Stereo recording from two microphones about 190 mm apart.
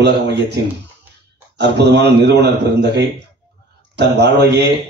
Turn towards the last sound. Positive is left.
turn(degrees=-60)  # may be behind; listen again after turning